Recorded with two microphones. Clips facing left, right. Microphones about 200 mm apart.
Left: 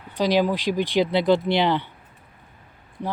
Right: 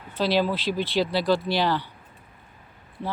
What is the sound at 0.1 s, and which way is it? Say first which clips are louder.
Speech: left 3 dB; 15° left (ahead or behind).